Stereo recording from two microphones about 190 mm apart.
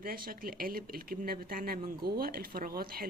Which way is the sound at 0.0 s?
50° right (ahead or behind).